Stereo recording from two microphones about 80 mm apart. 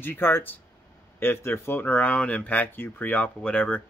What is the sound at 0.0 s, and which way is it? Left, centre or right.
Speech, left.